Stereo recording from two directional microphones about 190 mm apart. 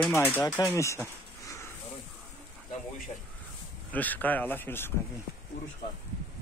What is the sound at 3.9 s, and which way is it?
Speech, 10° left (ahead or behind).